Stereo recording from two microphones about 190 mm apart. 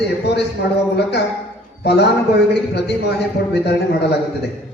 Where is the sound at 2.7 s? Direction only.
60° left (ahead or behind).